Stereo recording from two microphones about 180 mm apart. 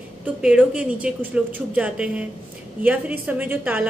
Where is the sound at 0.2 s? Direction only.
5° right (ahead or behind).